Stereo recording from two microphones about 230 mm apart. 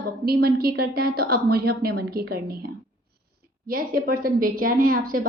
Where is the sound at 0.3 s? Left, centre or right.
Right.